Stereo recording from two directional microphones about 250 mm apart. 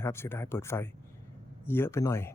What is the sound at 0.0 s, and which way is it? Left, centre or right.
Speech, centre.